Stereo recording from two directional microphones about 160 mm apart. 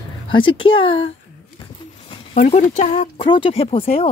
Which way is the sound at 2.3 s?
50° left (ahead or behind).